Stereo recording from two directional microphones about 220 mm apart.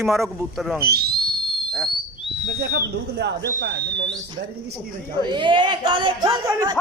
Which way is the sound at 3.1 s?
45° right (ahead or behind).